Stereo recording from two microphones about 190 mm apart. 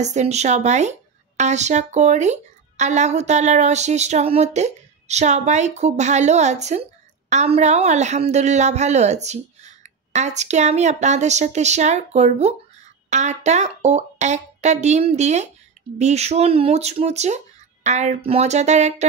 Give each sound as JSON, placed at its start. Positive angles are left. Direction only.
{"t": 0.0, "sound": "speech", "side_deg": -35}